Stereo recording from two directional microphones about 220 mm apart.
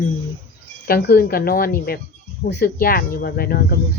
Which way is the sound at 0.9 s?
45° left (ahead or behind).